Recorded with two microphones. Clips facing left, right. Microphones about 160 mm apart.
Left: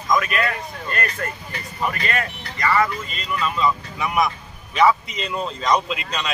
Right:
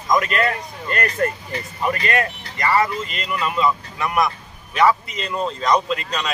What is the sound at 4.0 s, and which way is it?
A man's voice, centre (ahead or behind).